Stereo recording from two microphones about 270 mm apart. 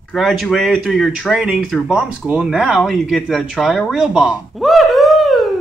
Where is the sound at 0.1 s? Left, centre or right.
Centre.